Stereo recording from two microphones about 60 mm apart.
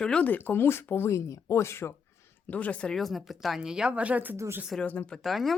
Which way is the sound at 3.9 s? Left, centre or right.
Right.